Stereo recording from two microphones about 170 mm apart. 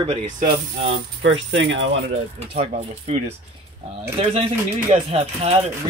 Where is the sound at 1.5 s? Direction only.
90° right.